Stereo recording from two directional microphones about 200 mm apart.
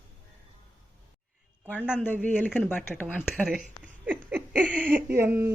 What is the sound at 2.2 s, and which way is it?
Speech, 10° left (ahead or behind).